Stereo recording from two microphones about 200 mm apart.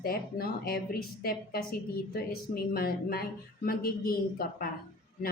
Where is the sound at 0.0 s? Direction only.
50° left (ahead or behind).